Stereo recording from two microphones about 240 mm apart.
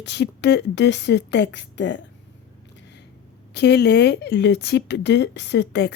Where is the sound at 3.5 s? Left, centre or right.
Left.